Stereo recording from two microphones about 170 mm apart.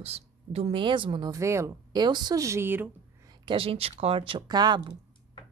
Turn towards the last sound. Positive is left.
turn(degrees=-25)  # may be behind; listen again after turning